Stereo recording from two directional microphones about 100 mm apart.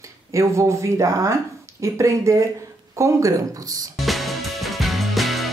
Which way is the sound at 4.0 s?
Centre (ahead or behind).